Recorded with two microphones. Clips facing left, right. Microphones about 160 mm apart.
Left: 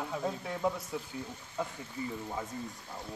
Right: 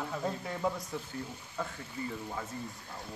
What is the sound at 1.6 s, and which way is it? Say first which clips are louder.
Speech: left 1 dB; 15° left (ahead or behind).